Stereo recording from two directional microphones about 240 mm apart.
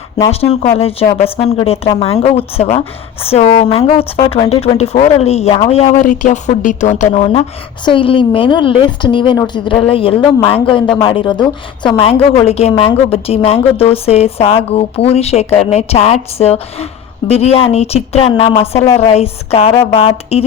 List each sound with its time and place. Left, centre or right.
0.3 s a woman's voice: left